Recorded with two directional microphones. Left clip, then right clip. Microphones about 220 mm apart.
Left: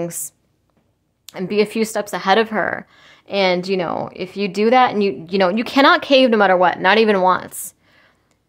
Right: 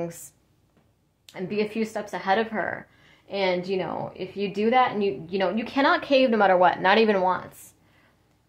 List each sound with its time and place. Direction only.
1.2 s speech: 40° left (ahead or behind)